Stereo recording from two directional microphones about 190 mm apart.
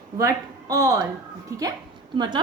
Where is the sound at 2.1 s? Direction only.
25° right (ahead or behind).